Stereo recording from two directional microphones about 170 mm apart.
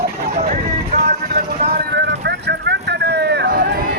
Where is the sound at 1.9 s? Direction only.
85° right; by 3.7 s 65° right (ahead or behind).